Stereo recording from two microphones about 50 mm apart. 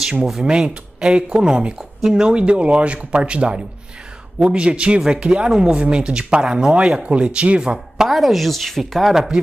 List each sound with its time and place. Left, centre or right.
0.2 s speech: centre
8.1 s speech: centre
9.3 s speech: centre